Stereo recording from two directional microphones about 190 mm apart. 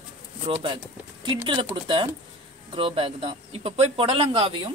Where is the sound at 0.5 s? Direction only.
30° right (ahead or behind).